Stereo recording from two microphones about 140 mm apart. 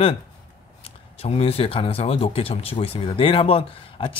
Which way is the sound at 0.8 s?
45° left (ahead or behind).